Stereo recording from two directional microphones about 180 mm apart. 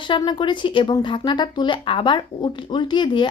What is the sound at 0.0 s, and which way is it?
Speech, 25° left (ahead or behind).